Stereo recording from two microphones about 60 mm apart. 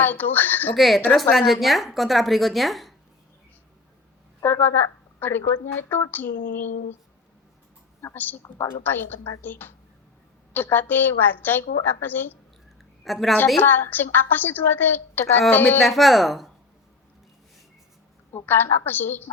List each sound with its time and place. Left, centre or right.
0.0 s a woman's voice: left
0.8 s a woman's voice: centre
4.4 s a woman's voice: left
8.0 s a woman's voice: left
13.1 s a woman's voice: centre
13.6 s a woman's voice: left
15.8 s a woman's voice: centre
18.3 s a woman's voice: left